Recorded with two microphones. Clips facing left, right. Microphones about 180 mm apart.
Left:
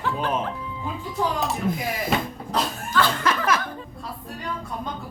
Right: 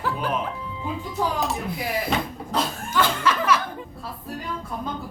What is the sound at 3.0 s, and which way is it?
Chuckle, 15° right (ahead or behind).